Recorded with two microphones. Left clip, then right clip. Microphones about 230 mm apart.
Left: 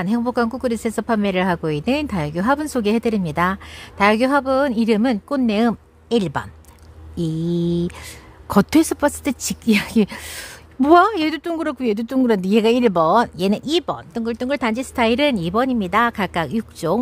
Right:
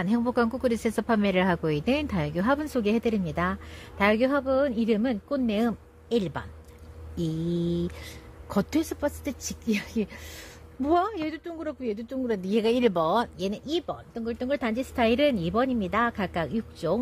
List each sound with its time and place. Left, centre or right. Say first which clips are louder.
0.0 s a woman's voice: left 5 dB; centre